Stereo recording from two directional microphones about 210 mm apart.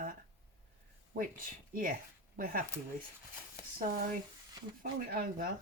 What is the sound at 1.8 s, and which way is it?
Speech, 40° right (ahead or behind).